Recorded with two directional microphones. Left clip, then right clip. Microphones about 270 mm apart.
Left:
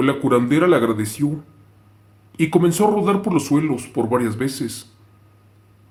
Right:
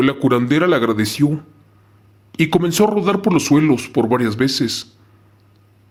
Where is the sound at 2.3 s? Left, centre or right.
Right.